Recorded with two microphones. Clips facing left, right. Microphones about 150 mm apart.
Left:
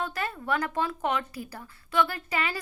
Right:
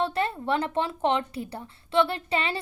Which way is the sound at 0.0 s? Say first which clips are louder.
Right 6 dB; 30° right (ahead or behind).